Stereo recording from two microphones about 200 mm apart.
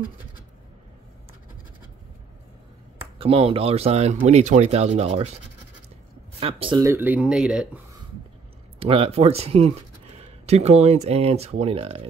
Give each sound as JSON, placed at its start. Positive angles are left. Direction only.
{"t": 3.2, "sound": "speech", "side_deg": -30}
{"t": 6.4, "sound": "speech", "side_deg": -25}
{"t": 6.8, "sound": "speech", "side_deg": -10}
{"t": 8.7, "sound": "speech", "side_deg": -25}